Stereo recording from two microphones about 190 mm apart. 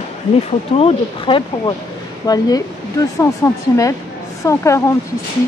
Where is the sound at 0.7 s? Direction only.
30° left (ahead or behind).